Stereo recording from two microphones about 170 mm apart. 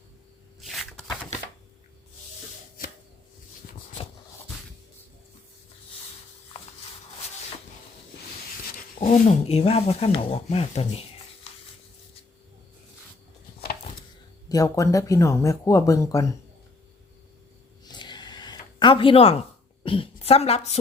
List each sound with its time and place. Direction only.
0.6 s shuffling cards: centre (ahead or behind)
3.6 s a sound: 55° left (ahead or behind)
9.0 s speech: 45° left (ahead or behind)
14.5 s speech: 20° left (ahead or behind)
17.8 s a sound: 25° left (ahead or behind)
19.8 s a woman's voice: 30° left (ahead or behind)